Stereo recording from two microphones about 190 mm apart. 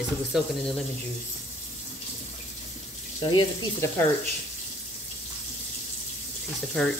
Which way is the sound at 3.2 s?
25° left (ahead or behind).